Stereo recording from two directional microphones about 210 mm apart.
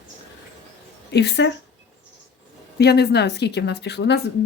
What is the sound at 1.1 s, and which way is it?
Speech, 55° left (ahead or behind).